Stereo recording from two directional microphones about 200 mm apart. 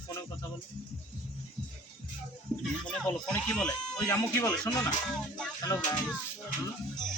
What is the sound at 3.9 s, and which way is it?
Speech, 20° left (ahead or behind).